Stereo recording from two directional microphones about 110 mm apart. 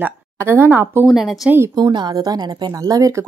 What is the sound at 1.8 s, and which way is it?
Speech, 40° right (ahead or behind).